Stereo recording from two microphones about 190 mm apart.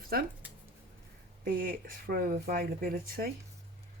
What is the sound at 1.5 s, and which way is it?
Speech, 45° right (ahead or behind).